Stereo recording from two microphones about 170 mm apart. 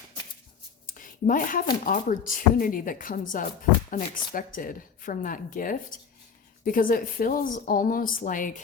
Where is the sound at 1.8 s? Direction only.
55° left (ahead or behind).